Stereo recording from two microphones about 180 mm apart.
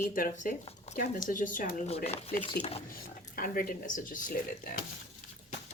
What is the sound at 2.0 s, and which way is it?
Speech, 35° left (ahead or behind).